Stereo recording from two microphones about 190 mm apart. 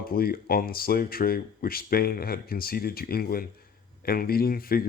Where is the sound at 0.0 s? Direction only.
50° left (ahead or behind).